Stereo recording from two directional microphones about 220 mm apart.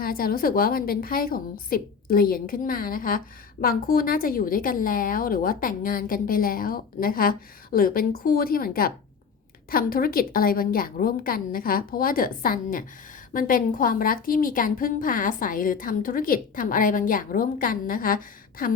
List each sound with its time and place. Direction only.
0.0 s a woman's voice: 40° left (ahead or behind)